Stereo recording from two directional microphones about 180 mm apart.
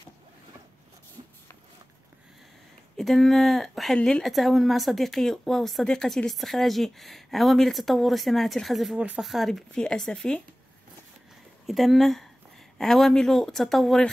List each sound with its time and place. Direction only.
1.2 s a sound: 35° right (ahead or behind)
3.0 s speech: centre (ahead or behind)
11.6 s speech: centre (ahead or behind)